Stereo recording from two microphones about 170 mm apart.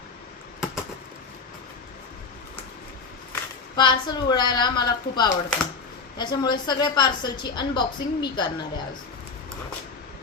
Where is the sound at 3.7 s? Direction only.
25° left (ahead or behind).